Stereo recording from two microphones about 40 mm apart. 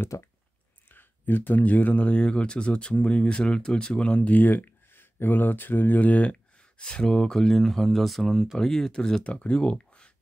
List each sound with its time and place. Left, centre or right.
0.9 s speech: left
4.1 s speech: left
4.9 s speech: left
6.8 s speech: left
7.1 s speech: centre
9.2 s speech: left